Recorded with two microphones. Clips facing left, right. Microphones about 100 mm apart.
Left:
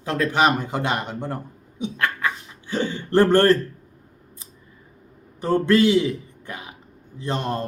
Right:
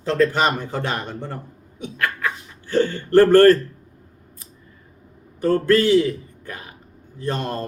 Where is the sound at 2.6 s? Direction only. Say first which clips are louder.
Right 5 dB; 15° left (ahead or behind).